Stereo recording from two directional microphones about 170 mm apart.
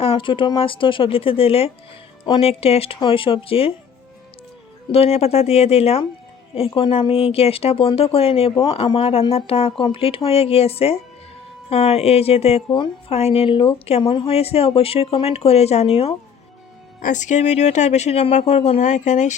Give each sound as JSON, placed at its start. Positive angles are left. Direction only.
{"t": 0.0, "sound": "a woman's voice", "side_deg": 30}
{"t": 4.9, "sound": "a woman's voice", "side_deg": 35}
{"t": 17.0, "sound": "speech", "side_deg": 45}